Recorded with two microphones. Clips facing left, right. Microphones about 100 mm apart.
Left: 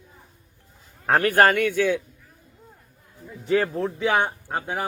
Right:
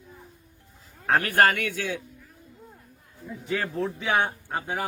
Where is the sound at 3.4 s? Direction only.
35° left (ahead or behind).